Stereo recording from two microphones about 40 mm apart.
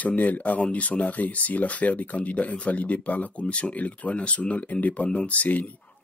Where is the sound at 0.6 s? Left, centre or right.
Left.